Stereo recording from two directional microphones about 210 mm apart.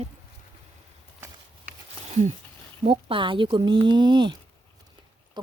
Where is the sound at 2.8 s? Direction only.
25° right (ahead or behind).